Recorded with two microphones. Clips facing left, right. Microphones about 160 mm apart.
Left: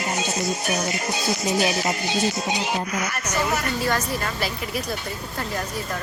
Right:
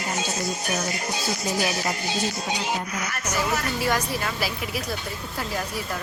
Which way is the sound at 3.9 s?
10° right (ahead or behind).